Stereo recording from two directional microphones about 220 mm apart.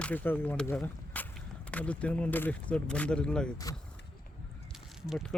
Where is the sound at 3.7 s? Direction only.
15° left (ahead or behind).